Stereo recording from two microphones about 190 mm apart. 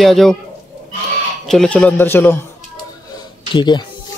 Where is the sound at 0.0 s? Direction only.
Centre (ahead or behind).